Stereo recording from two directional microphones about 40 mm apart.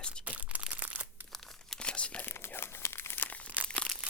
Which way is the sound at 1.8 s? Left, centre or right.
Left.